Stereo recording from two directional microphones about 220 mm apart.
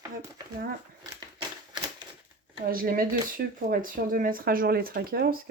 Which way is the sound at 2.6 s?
40° right (ahead or behind).